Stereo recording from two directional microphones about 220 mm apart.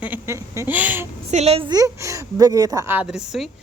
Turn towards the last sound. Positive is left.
turn(degrees=0)  # may be behind; listen again after turning